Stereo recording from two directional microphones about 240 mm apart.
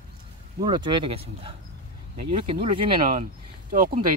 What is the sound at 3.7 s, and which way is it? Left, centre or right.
Speech, right.